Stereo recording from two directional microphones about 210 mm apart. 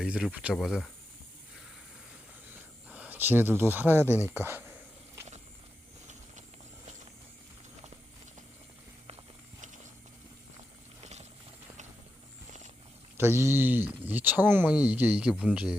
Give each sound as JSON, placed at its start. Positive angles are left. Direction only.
{"t": 0.0, "sound": "speech", "side_deg": -5}
{"t": 2.9, "sound": "speech", "side_deg": -5}
{"t": 11.0, "sound": "a sound", "side_deg": -30}
{"t": 13.1, "sound": "speech", "side_deg": -10}